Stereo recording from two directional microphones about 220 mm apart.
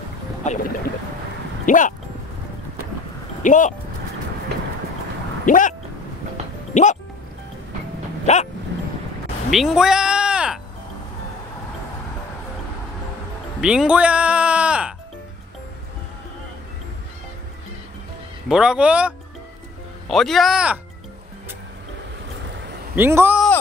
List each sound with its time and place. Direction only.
0.5 s speech: 30° left (ahead or behind)
1.7 s speech: 35° left (ahead or behind)
3.4 s speech: 35° left (ahead or behind)
5.4 s a sound: 35° left (ahead or behind)
6.7 s speech: 35° left (ahead or behind)
8.3 s dog: 30° left (ahead or behind)
8.7 s music: 50° right (ahead or behind)
9.5 s a sound: centre (ahead or behind)
13.6 s music: 5° right (ahead or behind)
18.5 s a man's voice: 5° right (ahead or behind)
22.9 s a man's voice: 10° right (ahead or behind)